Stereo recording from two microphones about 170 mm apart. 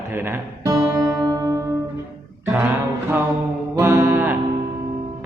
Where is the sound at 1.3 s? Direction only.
20° right (ahead or behind).